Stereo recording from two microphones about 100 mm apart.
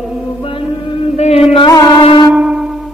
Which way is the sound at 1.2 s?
90° left.